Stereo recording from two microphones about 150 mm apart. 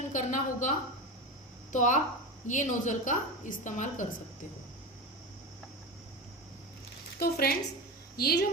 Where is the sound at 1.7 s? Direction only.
55° left (ahead or behind).